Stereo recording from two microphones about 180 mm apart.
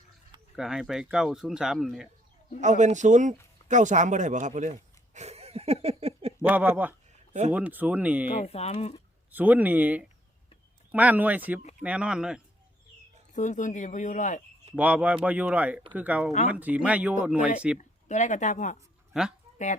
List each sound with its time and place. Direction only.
0.5 s speech: 5° right (ahead or behind)
2.6 s speech: 40° right (ahead or behind)
5.1 s a sound: 35° right (ahead or behind)
6.4 s speech: 10° right (ahead or behind)
8.3 s speech: 35° left (ahead or behind)
9.3 s speech: 10° right (ahead or behind)
13.3 s speech: 40° left (ahead or behind)
14.8 s speech: 5° right (ahead or behind)
17.7 s speech: 40° left (ahead or behind)
19.1 s speech: centre (ahead or behind)